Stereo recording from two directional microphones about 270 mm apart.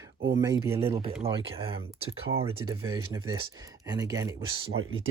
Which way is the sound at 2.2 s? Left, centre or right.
Right.